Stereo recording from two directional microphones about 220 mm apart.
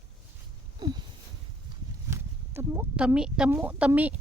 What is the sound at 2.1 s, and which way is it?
Speech, 10° right (ahead or behind).